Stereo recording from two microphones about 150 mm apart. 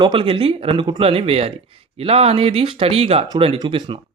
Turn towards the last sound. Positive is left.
turn(degrees=-35)  # may be behind; listen again after turning